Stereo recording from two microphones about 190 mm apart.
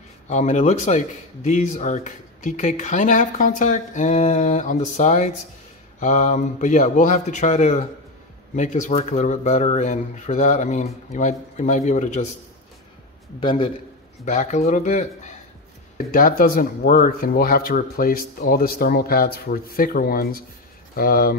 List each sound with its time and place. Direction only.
0.3 s speech: 40° left (ahead or behind)
13.4 s a man's voice: 25° left (ahead or behind)
14.2 s speech: 40° left (ahead or behind)